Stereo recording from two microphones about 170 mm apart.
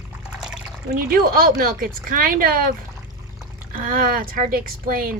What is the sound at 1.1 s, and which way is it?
Speech, 55° right (ahead or behind).